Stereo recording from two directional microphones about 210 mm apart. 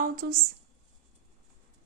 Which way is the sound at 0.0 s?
45° right (ahead or behind).